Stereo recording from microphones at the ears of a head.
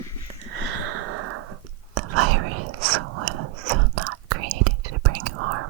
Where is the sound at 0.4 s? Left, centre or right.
Right.